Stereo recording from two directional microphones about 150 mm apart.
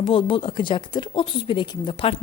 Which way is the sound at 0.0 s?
35° left (ahead or behind).